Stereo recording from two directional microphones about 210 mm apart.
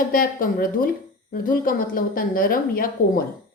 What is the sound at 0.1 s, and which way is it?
Speech, 40° left (ahead or behind).